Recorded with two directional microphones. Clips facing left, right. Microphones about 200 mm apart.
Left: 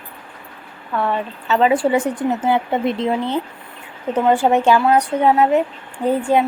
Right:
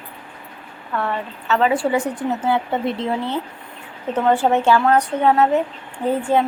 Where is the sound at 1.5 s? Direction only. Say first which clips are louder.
Left 2 dB; 20° left (ahead or behind).